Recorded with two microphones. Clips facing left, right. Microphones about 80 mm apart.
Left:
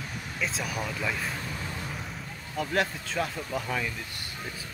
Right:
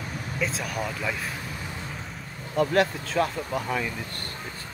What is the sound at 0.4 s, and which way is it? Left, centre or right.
Speech, centre.